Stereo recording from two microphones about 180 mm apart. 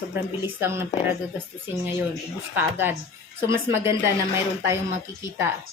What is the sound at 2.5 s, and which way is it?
A woman's voice, 10° right (ahead or behind).